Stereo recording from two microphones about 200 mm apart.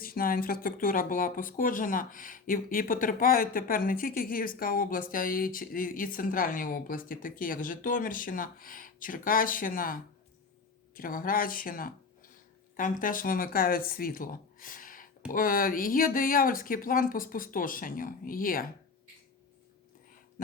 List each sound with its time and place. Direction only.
0.0 s speech: 45° left (ahead or behind)